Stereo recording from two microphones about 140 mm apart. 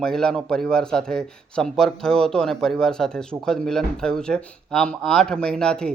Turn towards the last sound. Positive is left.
turn(degrees=5)  # may be behind; listen again after turning